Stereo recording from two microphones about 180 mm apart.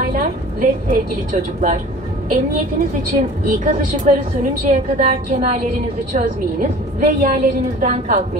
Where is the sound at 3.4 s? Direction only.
50° right (ahead or behind).